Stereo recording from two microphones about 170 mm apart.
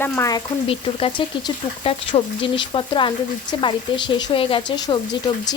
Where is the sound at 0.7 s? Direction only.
30° left (ahead or behind).